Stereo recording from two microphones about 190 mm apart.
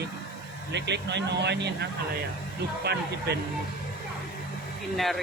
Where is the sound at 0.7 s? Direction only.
65° right (ahead or behind).